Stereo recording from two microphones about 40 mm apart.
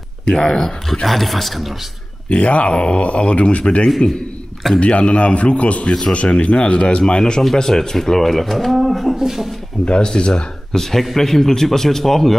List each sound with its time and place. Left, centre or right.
0.3 s a man's voice: centre
1.0 s speech: centre
2.2 s a man's voice: left; by 9.5 s centre
9.8 s a man's voice: left
10.7 s a man's voice: centre